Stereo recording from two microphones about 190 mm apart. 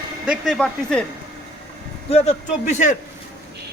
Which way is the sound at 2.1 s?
35° left (ahead or behind).